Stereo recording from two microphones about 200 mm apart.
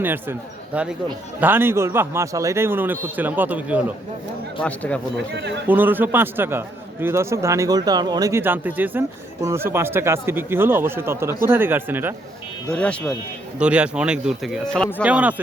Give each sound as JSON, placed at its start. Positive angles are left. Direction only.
{"t": 0.0, "sound": "a man's voice", "side_deg": -10}
{"t": 4.6, "sound": "speech", "side_deg": 5}
{"t": 5.1, "sound": "a man's voice", "side_deg": -60}
{"t": 5.6, "sound": "a man's voice", "side_deg": -10}
{"t": 12.7, "sound": "a man's voice", "side_deg": 5}
{"t": 13.6, "sound": "a man's voice", "side_deg": -5}
{"t": 15.0, "sound": "a man's voice", "side_deg": -5}